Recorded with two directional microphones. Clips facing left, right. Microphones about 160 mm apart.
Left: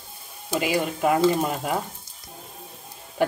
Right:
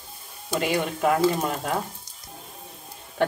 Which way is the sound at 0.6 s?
5° left (ahead or behind).